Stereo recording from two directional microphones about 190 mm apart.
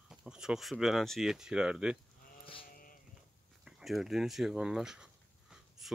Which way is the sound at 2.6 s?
50° left (ahead or behind).